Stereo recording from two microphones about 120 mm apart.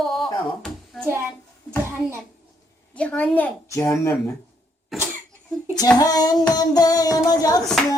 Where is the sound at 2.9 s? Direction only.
10° left (ahead or behind).